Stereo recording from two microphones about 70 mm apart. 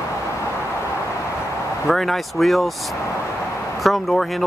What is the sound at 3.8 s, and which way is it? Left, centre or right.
Speech, centre.